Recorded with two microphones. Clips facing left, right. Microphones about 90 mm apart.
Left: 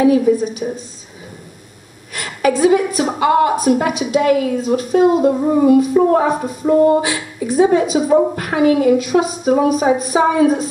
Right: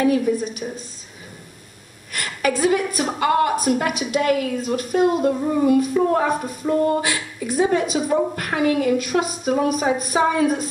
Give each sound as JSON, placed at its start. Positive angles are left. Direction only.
{"t": 0.0, "sound": "a woman's voice", "side_deg": 5}
{"t": 2.1, "sound": "a woman's voice", "side_deg": 5}
{"t": 5.3, "sound": "female singing", "side_deg": 20}
{"t": 6.0, "sound": "speech", "side_deg": 10}
{"t": 6.6, "sound": "speech", "side_deg": 20}
{"t": 7.0, "sound": "a woman's voice", "side_deg": 10}